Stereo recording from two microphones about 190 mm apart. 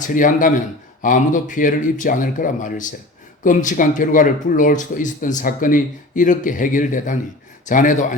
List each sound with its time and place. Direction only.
0.1 s speech: 45° left (ahead or behind)